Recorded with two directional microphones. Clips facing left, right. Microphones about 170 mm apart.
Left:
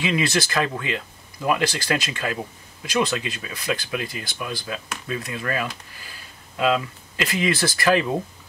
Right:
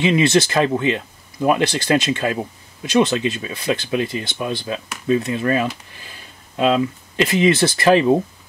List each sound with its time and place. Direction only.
0.0 s speech: 25° right (ahead or behind)